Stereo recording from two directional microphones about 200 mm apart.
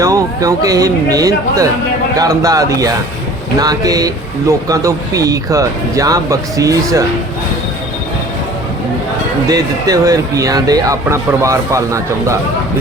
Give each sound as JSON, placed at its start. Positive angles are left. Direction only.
{"t": 0.0, "sound": "speech", "side_deg": -15}
{"t": 9.5, "sound": "speech", "side_deg": -20}